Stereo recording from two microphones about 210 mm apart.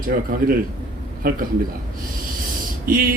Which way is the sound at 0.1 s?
40° right (ahead or behind).